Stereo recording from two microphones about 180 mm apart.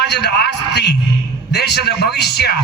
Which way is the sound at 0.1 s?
65° left (ahead or behind).